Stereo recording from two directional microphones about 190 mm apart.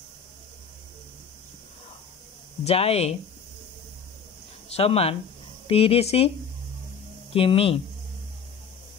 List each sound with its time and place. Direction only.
2.6 s speech: 30° left (ahead or behind)
4.6 s speech: 30° left (ahead or behind)
7.3 s speech: 30° left (ahead or behind)